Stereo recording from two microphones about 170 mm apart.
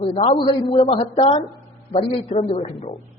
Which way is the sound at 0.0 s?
40° left (ahead or behind).